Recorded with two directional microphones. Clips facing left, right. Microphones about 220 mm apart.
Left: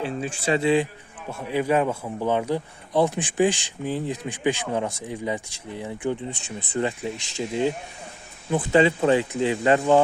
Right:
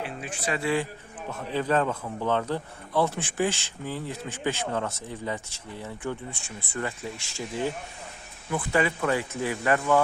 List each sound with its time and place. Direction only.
0.0 s speech: 30° left (ahead or behind)